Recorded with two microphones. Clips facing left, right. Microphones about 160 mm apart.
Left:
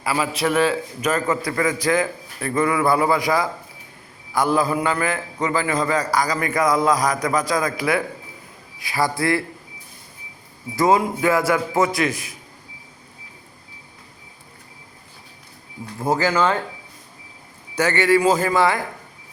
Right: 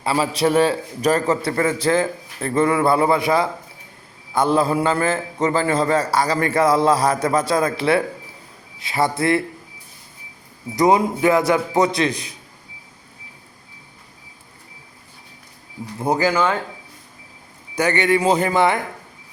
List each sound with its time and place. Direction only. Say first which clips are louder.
0.0 s a man's voice: right 3 dB; 30° right (ahead or behind)
10.8 s a man's voice: right 2 dB; 20° right (ahead or behind)
16.0 s speech: right 1 dB; 20° right (ahead or behind)
17.7 s a man's voice: left 1 dB; 15° right (ahead or behind)